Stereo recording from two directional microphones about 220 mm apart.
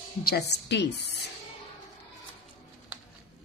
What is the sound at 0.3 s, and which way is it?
Speech, 50° left (ahead or behind).